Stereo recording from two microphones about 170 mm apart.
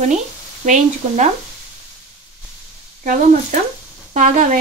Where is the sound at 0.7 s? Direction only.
45° right (ahead or behind).